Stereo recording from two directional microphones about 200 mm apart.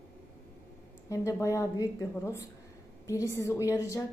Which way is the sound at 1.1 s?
15° left (ahead or behind).